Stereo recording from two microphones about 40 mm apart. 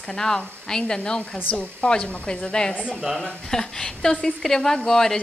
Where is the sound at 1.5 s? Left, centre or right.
Left.